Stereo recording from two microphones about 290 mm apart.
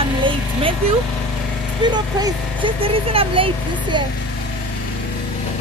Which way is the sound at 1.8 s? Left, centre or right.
Centre.